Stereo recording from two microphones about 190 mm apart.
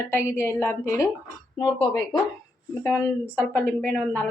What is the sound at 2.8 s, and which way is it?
A woman's voice, 10° left (ahead or behind).